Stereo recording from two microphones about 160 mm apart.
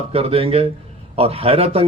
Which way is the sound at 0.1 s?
35° right (ahead or behind).